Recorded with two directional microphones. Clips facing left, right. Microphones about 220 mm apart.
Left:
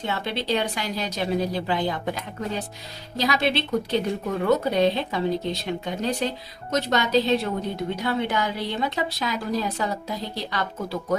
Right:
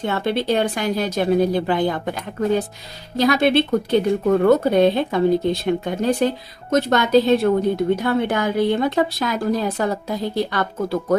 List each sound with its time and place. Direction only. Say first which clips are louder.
0.0 s speech: right 7 dB; 50° right (ahead or behind)